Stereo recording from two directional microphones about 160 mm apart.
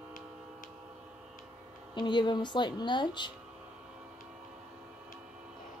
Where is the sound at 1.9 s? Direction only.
30° left (ahead or behind).